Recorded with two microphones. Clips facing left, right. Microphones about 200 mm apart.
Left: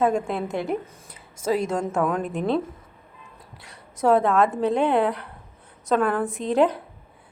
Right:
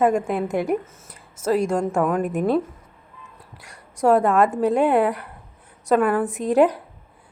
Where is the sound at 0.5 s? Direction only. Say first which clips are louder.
Right 4 dB; 15° right (ahead or behind).